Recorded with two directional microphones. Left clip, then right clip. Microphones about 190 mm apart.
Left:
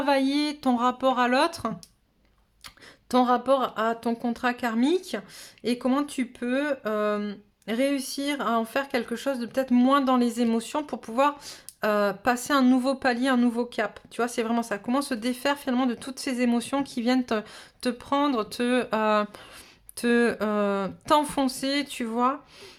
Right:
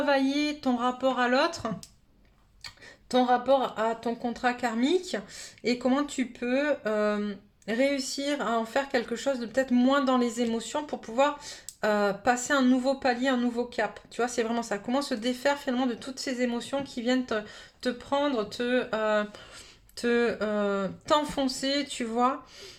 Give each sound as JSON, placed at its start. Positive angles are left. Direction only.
{"t": 0.0, "sound": "a woman's voice", "side_deg": 35}
{"t": 3.1, "sound": "a woman's voice", "side_deg": 35}